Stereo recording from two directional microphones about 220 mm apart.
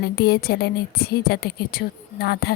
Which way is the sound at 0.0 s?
45° left (ahead or behind).